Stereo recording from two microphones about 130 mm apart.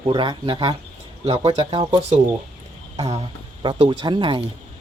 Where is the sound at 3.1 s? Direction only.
40° right (ahead or behind).